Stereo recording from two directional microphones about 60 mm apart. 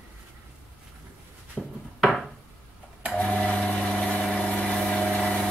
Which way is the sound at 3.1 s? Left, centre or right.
Centre.